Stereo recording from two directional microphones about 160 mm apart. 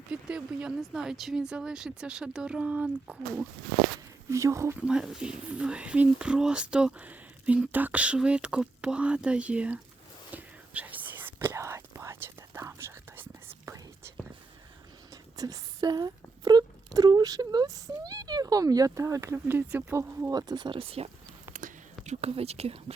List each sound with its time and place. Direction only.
0.1 s speech: 5° right (ahead or behind)
4.9 s speech: 5° right (ahead or behind)
10.3 s whispering: 10° right (ahead or behind)
15.1 s speech: 20° right (ahead or behind); by 21.1 s 35° right (ahead or behind)
21.5 s whispering: 50° right (ahead or behind)